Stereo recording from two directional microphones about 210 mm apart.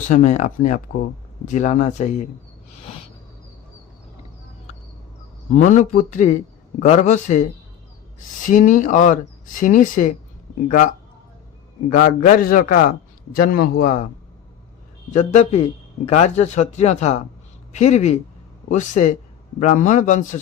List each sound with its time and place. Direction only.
0.1 s speech: 35° left (ahead or behind)
5.5 s speech: 35° left (ahead or behind)
8.4 s speech: 40° left (ahead or behind)
11.9 s a man's voice: 40° left (ahead or behind)
15.1 s speech: 35° left (ahead or behind)